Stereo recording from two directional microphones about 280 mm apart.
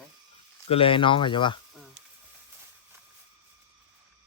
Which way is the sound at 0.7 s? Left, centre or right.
Centre.